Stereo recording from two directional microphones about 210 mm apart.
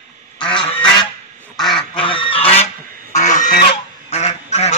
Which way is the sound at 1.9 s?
25° left (ahead or behind).